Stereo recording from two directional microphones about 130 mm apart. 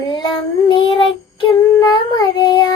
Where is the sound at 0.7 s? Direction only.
40° left (ahead or behind).